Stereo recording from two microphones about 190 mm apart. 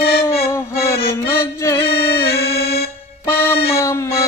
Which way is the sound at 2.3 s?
55° left (ahead or behind).